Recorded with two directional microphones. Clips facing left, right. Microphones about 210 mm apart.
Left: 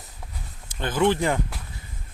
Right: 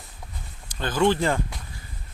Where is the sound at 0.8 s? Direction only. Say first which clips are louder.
Even; 20° left (ahead or behind).